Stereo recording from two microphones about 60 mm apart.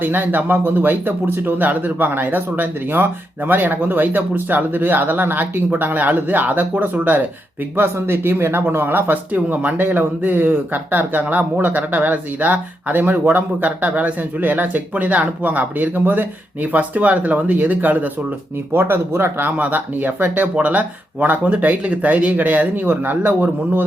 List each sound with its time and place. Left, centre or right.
0.0 s speech: right
18.7 s speech: right
19.5 s speech: right